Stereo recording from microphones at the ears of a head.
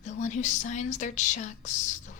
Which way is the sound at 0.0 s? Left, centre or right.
Left.